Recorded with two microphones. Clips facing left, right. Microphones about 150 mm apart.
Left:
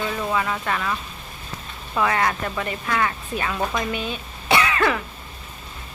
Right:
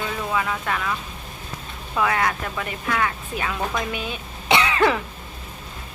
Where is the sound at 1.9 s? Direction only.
Centre (ahead or behind).